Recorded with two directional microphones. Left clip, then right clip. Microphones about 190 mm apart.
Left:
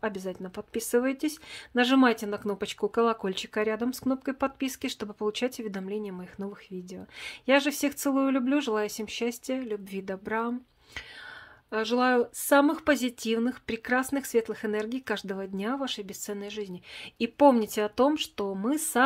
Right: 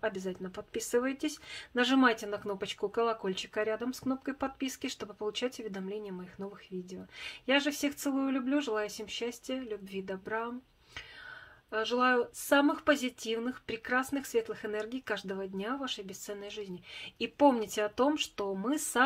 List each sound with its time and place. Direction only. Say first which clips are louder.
0.0 s speech: left 2 dB; 25° left (ahead or behind)
11.7 s speech: left 3 dB; 35° left (ahead or behind)